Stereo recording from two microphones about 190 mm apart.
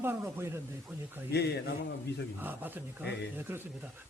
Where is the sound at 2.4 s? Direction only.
10° right (ahead or behind).